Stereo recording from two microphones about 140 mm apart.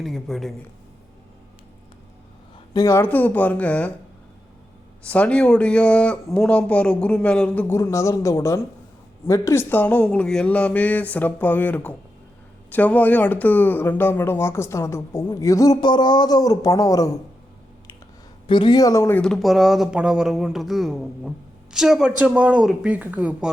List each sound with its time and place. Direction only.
0.0 s speech: centre (ahead or behind)
2.7 s speech: 20° left (ahead or behind)
5.0 s speech: 10° left (ahead or behind)
7.8 s speech: 20° left (ahead or behind)
18.4 s speech: 35° left (ahead or behind)
19.1 s speech: 5° left (ahead or behind)